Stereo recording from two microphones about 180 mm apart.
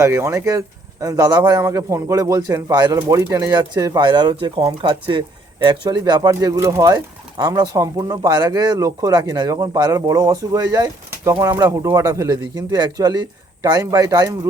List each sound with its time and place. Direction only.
0.0 s speech: 15° right (ahead or behind)